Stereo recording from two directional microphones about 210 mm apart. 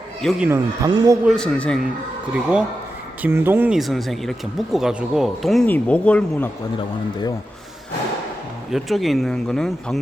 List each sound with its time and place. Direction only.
0.2 s speech: centre (ahead or behind)
0.4 s speech: 15° right (ahead or behind)
1.3 s speech: 5° left (ahead or behind)
3.2 s speech: 10° right (ahead or behind); by 6.5 s 5° left (ahead or behind)
8.7 s speech: centre (ahead or behind)